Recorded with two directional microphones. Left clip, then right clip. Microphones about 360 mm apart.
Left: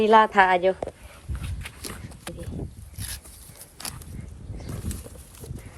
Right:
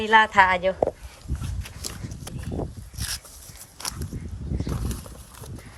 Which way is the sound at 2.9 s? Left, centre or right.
Centre.